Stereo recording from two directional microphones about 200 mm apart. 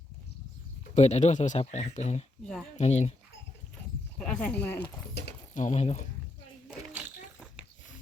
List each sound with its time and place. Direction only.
0.9 s speech: 35° left (ahead or behind)
4.2 s speech: 5° left (ahead or behind)
4.8 s speech: 55° left (ahead or behind)
5.5 s speech: 35° left (ahead or behind)
6.7 s a sound: 5° right (ahead or behind)